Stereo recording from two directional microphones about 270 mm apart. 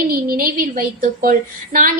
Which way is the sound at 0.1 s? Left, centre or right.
Right.